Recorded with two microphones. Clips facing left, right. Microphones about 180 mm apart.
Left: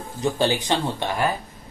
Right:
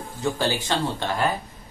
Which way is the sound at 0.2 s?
20° left (ahead or behind).